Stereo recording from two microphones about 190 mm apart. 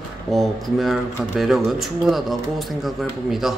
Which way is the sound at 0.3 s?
Centre (ahead or behind).